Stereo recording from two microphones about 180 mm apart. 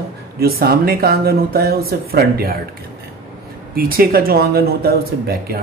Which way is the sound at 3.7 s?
55° right (ahead or behind).